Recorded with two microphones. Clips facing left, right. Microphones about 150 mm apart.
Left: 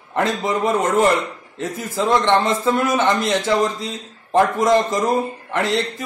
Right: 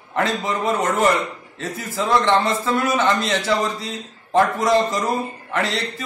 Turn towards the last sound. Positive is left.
turn(degrees=15)  # may be behind; listen again after turning